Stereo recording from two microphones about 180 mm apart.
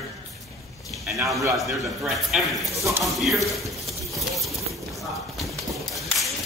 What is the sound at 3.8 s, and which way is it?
Clip-clop, centre (ahead or behind).